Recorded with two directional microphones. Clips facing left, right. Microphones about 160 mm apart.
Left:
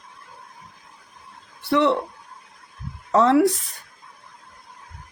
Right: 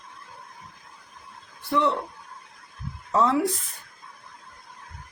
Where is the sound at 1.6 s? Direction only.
75° left (ahead or behind).